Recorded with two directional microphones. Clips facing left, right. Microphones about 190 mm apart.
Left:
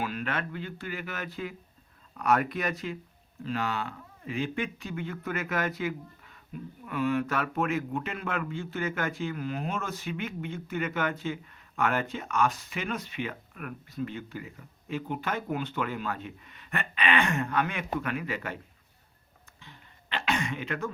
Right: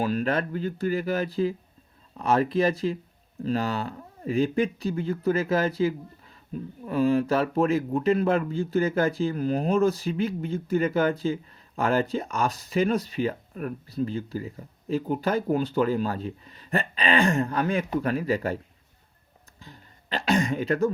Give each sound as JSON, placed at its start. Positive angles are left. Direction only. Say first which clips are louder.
{"t": 0.0, "sound": "speech", "louder": "right 7 dB", "side_deg": -35}
{"t": 19.5, "sound": "throat clearing", "louder": "right 5 dB", "side_deg": -40}